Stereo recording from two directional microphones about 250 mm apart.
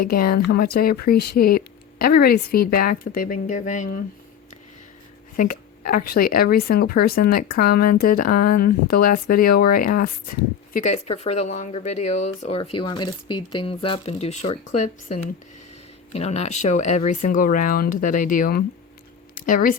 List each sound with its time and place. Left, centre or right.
0.0 s speech: left
5.4 s speech: left
16.1 s speech: left
19.3 s a sound: left